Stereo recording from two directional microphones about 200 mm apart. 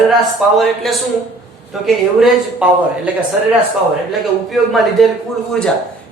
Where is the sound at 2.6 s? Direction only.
5° right (ahead or behind).